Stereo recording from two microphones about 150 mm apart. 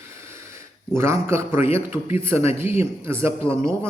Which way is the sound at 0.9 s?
15° right (ahead or behind).